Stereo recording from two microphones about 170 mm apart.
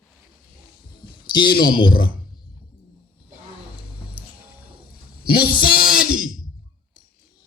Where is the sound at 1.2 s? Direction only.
25° left (ahead or behind).